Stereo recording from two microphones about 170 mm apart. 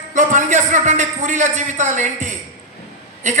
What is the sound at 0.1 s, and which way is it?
A man's voice, 45° right (ahead or behind).